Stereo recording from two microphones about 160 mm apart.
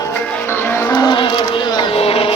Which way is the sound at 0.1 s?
10° left (ahead or behind).